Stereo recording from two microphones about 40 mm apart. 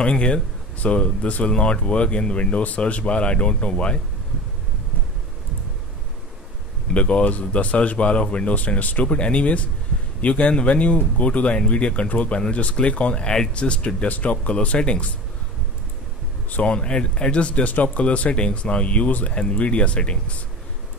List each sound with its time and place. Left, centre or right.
0.0 s speech: left
6.9 s speech: left
13.1 s speech: centre
14.0 s speech: left
16.6 s speech: left